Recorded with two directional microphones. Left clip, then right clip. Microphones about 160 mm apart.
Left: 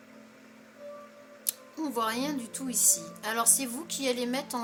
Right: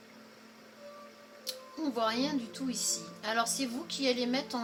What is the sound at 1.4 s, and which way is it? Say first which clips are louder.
Music: left 1 dB; 30° left (ahead or behind).